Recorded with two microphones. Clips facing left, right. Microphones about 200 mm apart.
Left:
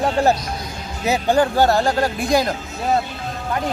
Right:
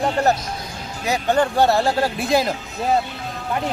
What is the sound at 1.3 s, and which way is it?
Speech, centre (ahead or behind).